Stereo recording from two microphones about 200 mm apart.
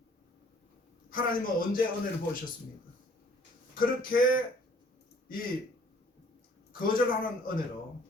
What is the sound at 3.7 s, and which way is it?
Speech, 45° left (ahead or behind).